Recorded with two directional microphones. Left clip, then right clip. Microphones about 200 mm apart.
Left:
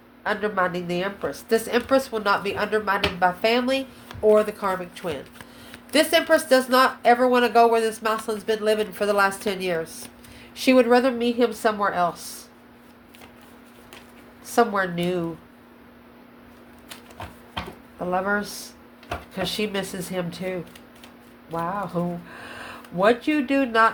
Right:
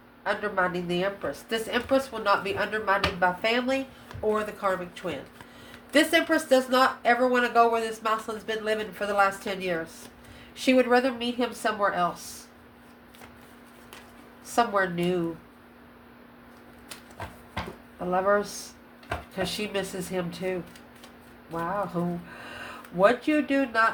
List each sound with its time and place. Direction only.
0.3 s a woman's voice: 30° left (ahead or behind)
14.5 s speech: 30° left (ahead or behind)
18.1 s a woman's voice: 30° left (ahead or behind)